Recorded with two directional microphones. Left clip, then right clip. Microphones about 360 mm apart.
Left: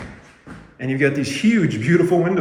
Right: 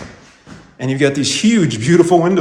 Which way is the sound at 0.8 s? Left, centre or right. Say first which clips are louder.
Right 4 dB; centre.